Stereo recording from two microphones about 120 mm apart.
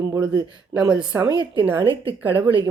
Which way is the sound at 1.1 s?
35° right (ahead or behind).